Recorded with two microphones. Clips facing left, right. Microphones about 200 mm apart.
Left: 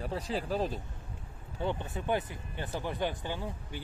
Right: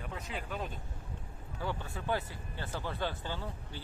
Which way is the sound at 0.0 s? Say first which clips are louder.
Left 7 dB; 35° left (ahead or behind).